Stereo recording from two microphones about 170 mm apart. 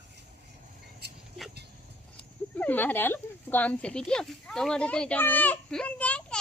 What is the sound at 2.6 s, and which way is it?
Speech, 10° left (ahead or behind).